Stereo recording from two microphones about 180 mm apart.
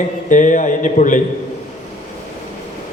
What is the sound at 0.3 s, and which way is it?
Speech, 45° left (ahead or behind).